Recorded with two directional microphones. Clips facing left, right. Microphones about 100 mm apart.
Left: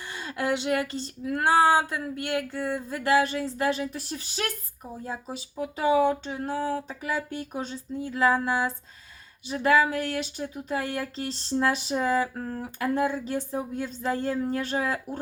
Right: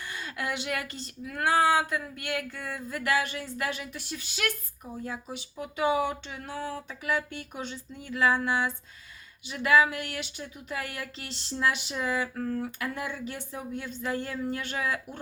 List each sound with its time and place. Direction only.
0.1 s speech: 30° left (ahead or behind)